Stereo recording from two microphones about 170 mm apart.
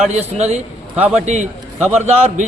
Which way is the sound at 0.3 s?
40° right (ahead or behind).